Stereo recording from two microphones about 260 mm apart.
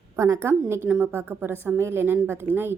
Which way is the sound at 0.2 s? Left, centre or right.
Centre.